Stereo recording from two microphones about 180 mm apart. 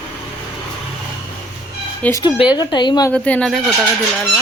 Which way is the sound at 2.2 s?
25° left (ahead or behind).